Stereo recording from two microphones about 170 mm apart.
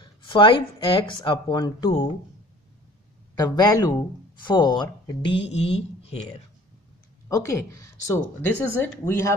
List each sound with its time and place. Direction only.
0.0 s speech: 30° left (ahead or behind)
3.3 s speech: 25° left (ahead or behind)
7.2 s speech: 15° left (ahead or behind)